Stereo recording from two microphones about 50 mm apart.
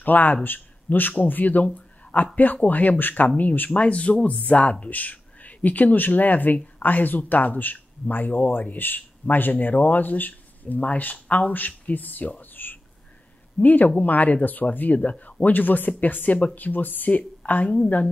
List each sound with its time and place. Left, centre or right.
0.0 s speech: left
3.8 s a woman's voice: left